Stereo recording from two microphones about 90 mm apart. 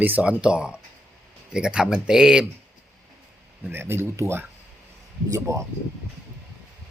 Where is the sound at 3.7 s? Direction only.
25° right (ahead or behind).